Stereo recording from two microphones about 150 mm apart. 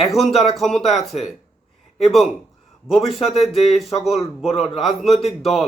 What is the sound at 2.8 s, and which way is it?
Speech, centre (ahead or behind).